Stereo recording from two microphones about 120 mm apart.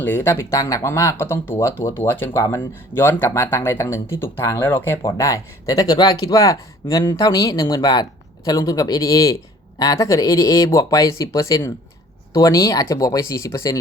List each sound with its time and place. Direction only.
0.0 s speech: 15° left (ahead or behind)